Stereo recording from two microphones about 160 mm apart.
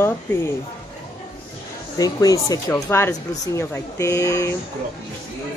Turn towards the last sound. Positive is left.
turn(degrees=20)  # may be behind; listen again after turning